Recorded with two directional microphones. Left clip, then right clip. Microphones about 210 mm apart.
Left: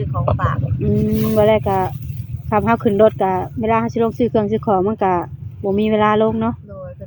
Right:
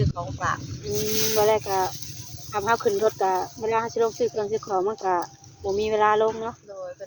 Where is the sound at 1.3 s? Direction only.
45° left (ahead or behind).